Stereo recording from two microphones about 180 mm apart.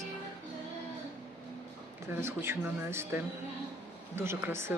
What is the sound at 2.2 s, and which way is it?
Speech, 15° right (ahead or behind).